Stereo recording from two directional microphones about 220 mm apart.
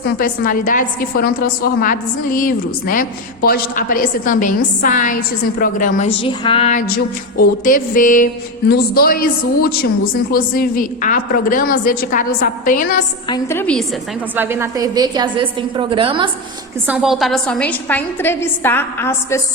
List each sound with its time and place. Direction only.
0.0 s a woman's voice: 40° left (ahead or behind)
10.3 s a woman's voice: 40° left (ahead or behind)
13.2 s a woman's voice: 15° left (ahead or behind)
14.3 s a woman's voice: 10° right (ahead or behind)
16.8 s a woman's voice: 5° right (ahead or behind)